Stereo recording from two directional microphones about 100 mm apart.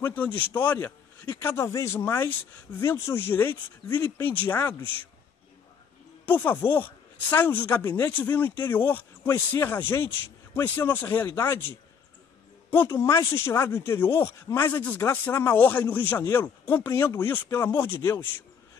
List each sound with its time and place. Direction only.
0.0 s speech: 20° left (ahead or behind)
6.2 s speech: 20° left (ahead or behind)
12.7 s speech: 25° left (ahead or behind)